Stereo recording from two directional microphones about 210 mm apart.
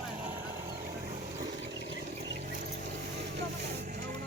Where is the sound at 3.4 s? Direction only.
50° right (ahead or behind).